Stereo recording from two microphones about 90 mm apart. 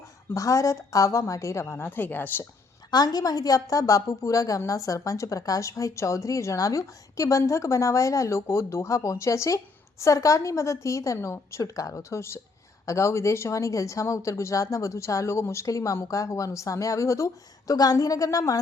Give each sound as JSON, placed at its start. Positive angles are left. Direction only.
{"t": 0.3, "sound": "a woman's voice", "side_deg": 35}
{"t": 2.9, "sound": "a woman's voice", "side_deg": 50}